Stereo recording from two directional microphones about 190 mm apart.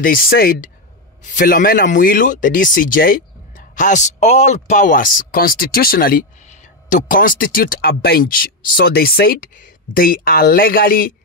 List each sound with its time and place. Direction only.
0.0 s speech: 50° left (ahead or behind)